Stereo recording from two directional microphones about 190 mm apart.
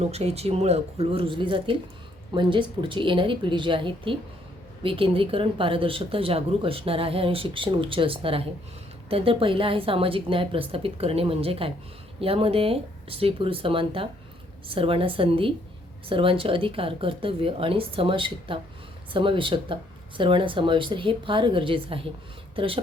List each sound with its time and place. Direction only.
0.1 s speech: 35° right (ahead or behind)